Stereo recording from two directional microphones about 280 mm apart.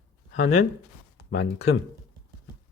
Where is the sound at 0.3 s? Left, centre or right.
Left.